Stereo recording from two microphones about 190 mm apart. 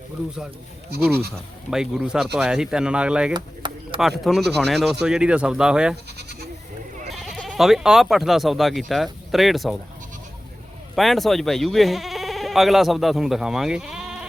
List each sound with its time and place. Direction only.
1.7 s speech: 5° right (ahead or behind)
3.3 s chop: 25° right (ahead or behind)
4.2 s speech: centre (ahead or behind)
6.1 s goat: 60° right (ahead or behind)
7.1 s speech: centre (ahead or behind)
10.9 s speech: centre (ahead or behind)